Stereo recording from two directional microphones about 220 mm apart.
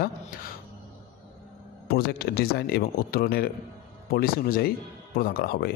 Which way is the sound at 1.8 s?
45° left (ahead or behind).